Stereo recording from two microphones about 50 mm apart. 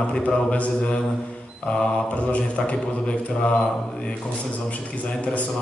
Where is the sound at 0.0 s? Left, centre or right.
Centre.